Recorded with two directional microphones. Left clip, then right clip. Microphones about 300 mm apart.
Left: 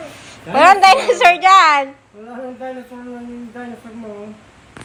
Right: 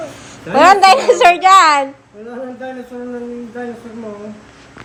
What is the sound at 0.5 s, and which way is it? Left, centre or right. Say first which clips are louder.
A woman's voice: right 1 dB; centre.